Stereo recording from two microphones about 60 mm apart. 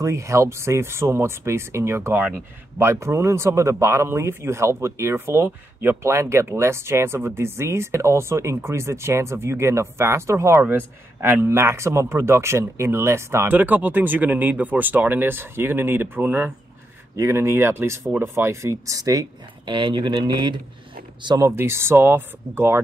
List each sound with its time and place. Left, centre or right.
0.0 s speech: right
6.0 s speech: right
10.6 s speech: right
11.4 s speech: right
13.5 s speech: right
17.2 s speech: right
21.5 s speech: right